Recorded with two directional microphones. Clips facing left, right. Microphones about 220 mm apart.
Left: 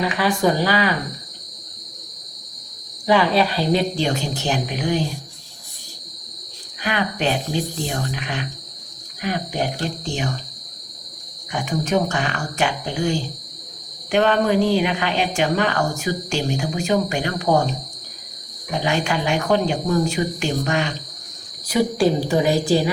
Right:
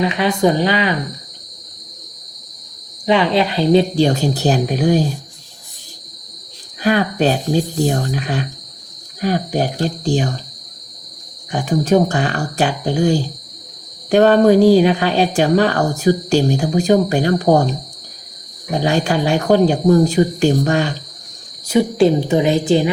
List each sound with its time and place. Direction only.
0.0 s a woman's voice: 25° right (ahead or behind)
3.1 s speech: 20° right (ahead or behind); by 5.0 s 40° right (ahead or behind)
6.8 s speech: 40° right (ahead or behind)
11.5 s speech: 35° right (ahead or behind)
18.7 s speech: 35° right (ahead or behind)
21.7 s a woman's voice: 25° right (ahead or behind)